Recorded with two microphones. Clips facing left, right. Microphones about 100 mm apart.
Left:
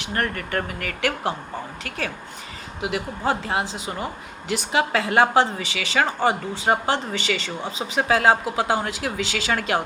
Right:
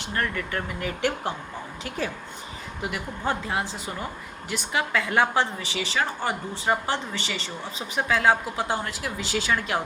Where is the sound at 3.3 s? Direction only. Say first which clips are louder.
Left 4 dB; 70° left (ahead or behind).